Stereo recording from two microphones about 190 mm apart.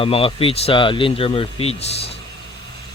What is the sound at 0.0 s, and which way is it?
Speech, 30° left (ahead or behind).